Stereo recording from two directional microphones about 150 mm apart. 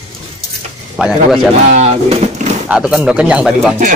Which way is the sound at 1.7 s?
50° right (ahead or behind).